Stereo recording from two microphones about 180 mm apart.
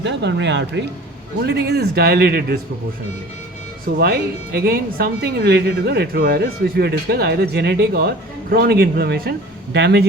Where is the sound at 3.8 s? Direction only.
60° right (ahead or behind).